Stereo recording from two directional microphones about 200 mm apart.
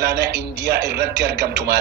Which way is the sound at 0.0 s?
55° right (ahead or behind).